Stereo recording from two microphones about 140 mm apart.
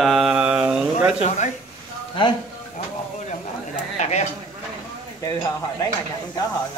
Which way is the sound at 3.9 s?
50° left (ahead or behind).